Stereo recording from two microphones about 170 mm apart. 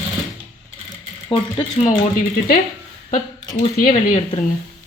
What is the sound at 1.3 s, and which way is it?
Speech, 30° left (ahead or behind).